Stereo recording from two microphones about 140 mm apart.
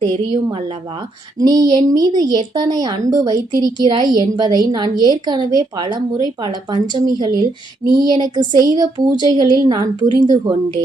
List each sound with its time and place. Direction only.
0.0 s a woman's voice: 30° right (ahead or behind)